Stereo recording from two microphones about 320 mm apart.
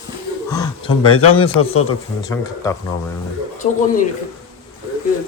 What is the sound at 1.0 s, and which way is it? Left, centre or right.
Speech, left.